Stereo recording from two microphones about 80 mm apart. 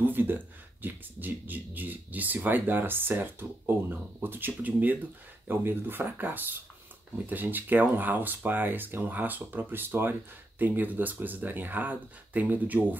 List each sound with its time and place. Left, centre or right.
0.0 s speech: right